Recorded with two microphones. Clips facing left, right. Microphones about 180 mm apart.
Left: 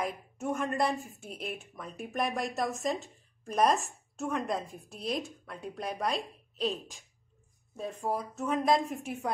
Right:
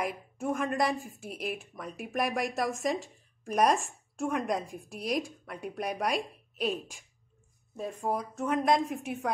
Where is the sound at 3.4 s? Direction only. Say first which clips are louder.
Right 1 dB; 10° right (ahead or behind).